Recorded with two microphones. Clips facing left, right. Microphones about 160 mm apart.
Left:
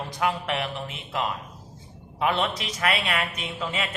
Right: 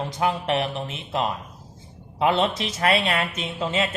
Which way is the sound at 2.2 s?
30° right (ahead or behind).